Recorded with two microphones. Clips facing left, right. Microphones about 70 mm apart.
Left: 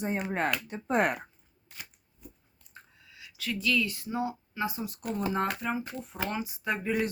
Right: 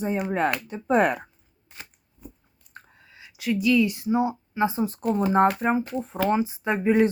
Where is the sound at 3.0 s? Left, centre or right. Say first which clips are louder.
Right 3 dB; right.